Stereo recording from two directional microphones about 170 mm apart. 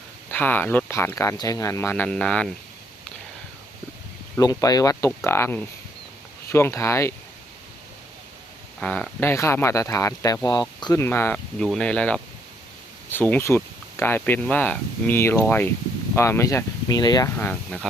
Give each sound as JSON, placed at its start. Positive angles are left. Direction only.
{"t": 0.3, "sound": "speech", "side_deg": 10}
{"t": 4.4, "sound": "speech", "side_deg": 20}
{"t": 8.8, "sound": "speech", "side_deg": 5}
{"t": 11.0, "sound": "speech", "side_deg": 15}
{"t": 17.3, "sound": "speech", "side_deg": 10}